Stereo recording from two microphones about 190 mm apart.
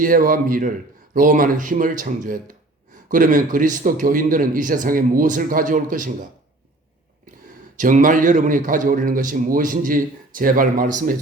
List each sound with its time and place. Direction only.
0.0 s a man's voice: 45° right (ahead or behind)
7.8 s a man's voice: 45° right (ahead or behind)